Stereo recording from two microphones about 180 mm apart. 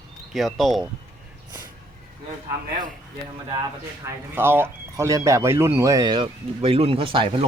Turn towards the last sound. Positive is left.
turn(degrees=-30)  # may be behind; listen again after turning